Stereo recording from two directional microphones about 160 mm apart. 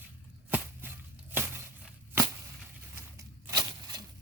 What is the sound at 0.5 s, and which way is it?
Chop, 10° right (ahead or behind).